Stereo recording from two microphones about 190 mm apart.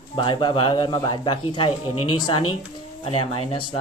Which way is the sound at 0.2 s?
25° left (ahead or behind).